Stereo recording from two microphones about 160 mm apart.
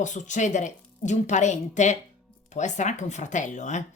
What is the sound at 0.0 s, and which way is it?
Speech, 50° left (ahead or behind).